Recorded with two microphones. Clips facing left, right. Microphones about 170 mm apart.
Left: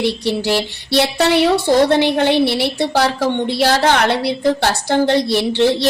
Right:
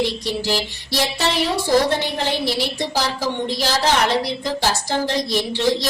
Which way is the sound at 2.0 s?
65° left (ahead or behind).